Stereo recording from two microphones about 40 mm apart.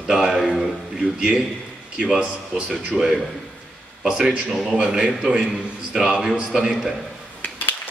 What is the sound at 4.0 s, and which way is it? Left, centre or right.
Speech, right.